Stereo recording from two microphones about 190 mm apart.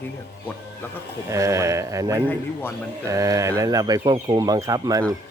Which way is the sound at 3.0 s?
15° right (ahead or behind).